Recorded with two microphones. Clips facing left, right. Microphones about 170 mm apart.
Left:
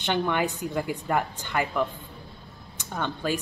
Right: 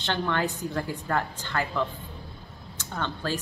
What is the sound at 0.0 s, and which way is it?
A woman's voice, 15° left (ahead or behind).